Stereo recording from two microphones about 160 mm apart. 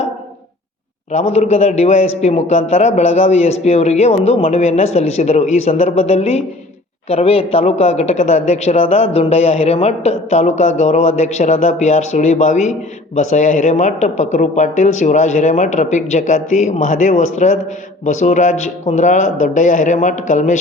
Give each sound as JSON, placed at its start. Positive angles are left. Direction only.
{"t": 1.1, "sound": "a man's voice", "side_deg": 40}